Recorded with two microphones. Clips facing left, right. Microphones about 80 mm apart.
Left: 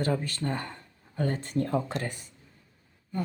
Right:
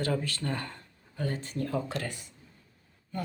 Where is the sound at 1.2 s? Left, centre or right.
Left.